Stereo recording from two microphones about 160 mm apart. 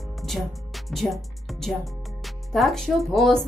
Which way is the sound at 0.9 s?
Centre (ahead or behind).